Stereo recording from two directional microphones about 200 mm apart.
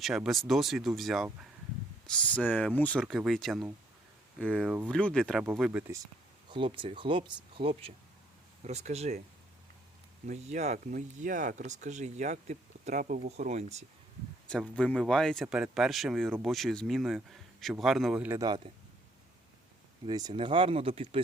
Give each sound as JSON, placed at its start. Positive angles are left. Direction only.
{"t": 0.0, "sound": "speech", "side_deg": 0}
{"t": 6.5, "sound": "speech", "side_deg": -25}
{"t": 10.2, "sound": "speech", "side_deg": -35}
{"t": 14.5, "sound": "speech", "side_deg": 5}
{"t": 20.1, "sound": "speech", "side_deg": -20}